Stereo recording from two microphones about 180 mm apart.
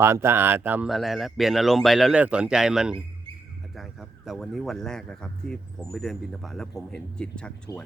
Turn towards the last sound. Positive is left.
turn(degrees=25)  # may be behind; listen again after turning